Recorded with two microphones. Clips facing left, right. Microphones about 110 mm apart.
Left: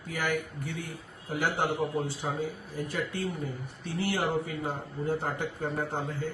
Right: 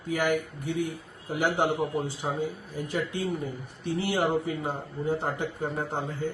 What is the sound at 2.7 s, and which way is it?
A man's voice, 15° right (ahead or behind).